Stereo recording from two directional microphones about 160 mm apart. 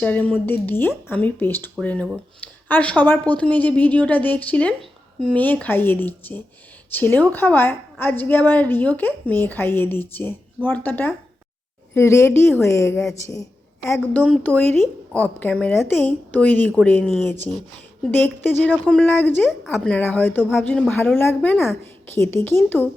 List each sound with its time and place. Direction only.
0.0 s speech: 10° left (ahead or behind)
14.4 s speech: 10° left (ahead or behind)